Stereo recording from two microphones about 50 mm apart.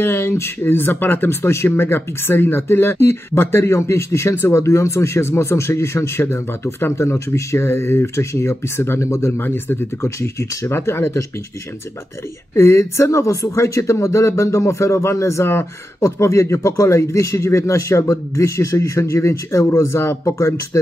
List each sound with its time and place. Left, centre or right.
0.0 s speech: left
9.0 s speech: left
9.4 s speech: left
10.0 s speech: left
12.5 s speech: left